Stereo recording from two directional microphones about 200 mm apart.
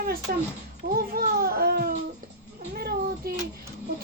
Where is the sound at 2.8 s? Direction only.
50° right (ahead or behind).